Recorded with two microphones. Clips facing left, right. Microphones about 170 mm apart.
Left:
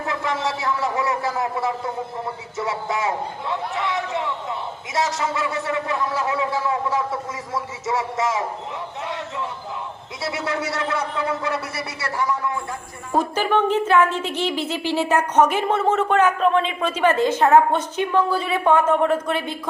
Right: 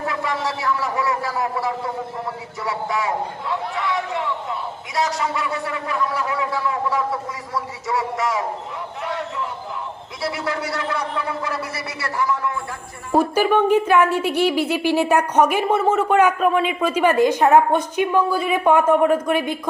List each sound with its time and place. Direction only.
0.1 s a man's voice: 20° left (ahead or behind)
10.2 s a man's voice: 20° left (ahead or behind)
13.1 s a woman's voice: 10° right (ahead or behind)